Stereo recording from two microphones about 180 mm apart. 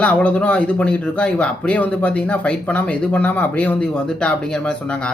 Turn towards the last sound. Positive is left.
turn(degrees=5)  # may be behind; listen again after turning